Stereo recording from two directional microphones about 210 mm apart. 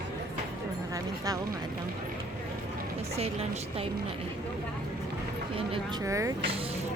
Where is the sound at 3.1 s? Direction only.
30° right (ahead or behind).